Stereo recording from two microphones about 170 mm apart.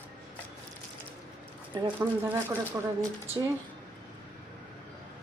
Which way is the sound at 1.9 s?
15° right (ahead or behind).